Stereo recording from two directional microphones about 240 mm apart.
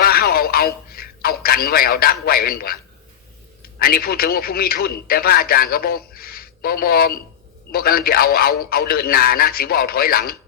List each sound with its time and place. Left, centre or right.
0.0 s a sound: left
2.2 s speech: left
3.8 s speech: left